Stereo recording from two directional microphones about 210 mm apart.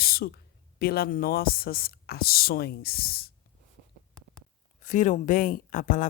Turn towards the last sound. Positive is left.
turn(degrees=40)  # may be behind; listen again after turning